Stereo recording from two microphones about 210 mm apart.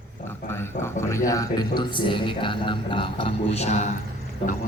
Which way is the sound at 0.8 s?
15° left (ahead or behind).